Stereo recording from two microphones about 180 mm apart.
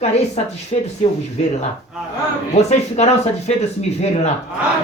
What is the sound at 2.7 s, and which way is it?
Speech, 35° left (ahead or behind).